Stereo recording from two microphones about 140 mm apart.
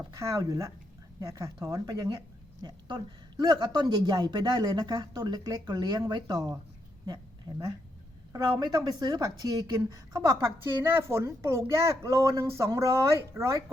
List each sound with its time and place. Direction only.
0.1 s a woman's voice: 20° right (ahead or behind)
8.3 s a woman's voice: 30° right (ahead or behind)